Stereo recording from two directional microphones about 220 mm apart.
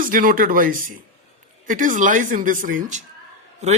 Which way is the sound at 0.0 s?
40° right (ahead or behind).